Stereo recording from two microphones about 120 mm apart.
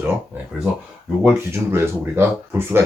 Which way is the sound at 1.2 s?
20° right (ahead or behind).